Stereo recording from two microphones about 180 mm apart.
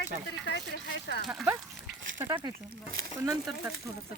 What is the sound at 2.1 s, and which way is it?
Speech, 20° right (ahead or behind).